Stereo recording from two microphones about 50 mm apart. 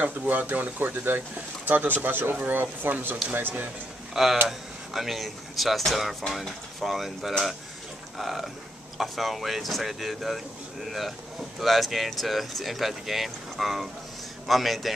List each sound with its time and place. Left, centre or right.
0.0 s speech: right
4.1 s speech: centre